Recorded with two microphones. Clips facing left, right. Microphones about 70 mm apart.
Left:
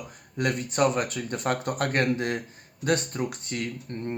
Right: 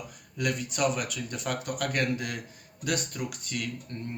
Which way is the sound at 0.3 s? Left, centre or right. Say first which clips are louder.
Left 5 dB; left.